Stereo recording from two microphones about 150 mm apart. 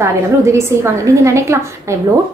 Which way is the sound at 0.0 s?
20° right (ahead or behind).